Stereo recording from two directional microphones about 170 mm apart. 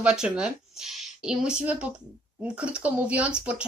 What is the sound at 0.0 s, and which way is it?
A woman's voice, 5° right (ahead or behind).